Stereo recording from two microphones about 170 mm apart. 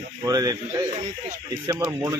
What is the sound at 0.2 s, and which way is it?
Speech, 20° right (ahead or behind).